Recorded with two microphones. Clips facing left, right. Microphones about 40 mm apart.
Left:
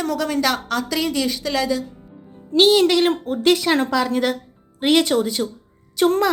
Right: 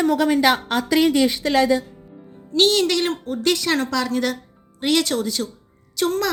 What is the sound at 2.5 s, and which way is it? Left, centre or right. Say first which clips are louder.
A woman's voice: left 3 dB; centre.